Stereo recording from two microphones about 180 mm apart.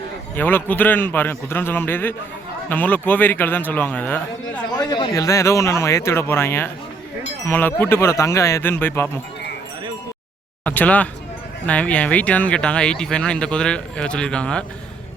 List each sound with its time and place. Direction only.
0.3 s a man's voice: 10° left (ahead or behind)
4.8 s a man's voice: 25° left (ahead or behind)
10.6 s a man's voice: 10° left (ahead or behind)